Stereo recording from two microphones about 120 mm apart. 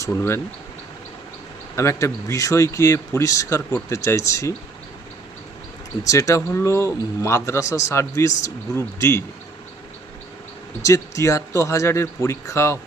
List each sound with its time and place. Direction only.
0.0 s speech: 25° left (ahead or behind)
1.7 s speech: 25° left (ahead or behind)
6.1 s speech: 25° left (ahead or behind)
10.8 s speech: 25° left (ahead or behind)